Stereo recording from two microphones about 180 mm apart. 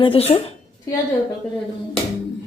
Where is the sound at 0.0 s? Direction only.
30° left (ahead or behind).